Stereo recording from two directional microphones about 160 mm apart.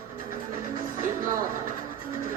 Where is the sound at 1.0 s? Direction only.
60° right (ahead or behind).